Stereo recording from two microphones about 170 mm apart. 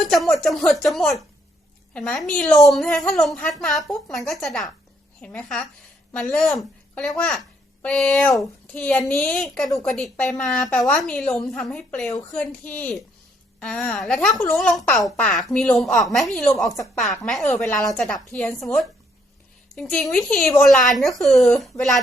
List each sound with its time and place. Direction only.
0.0 s a woman's voice: centre (ahead or behind)